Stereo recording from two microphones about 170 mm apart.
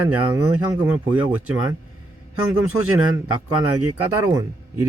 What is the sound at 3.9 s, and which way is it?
Speech, 15° right (ahead or behind).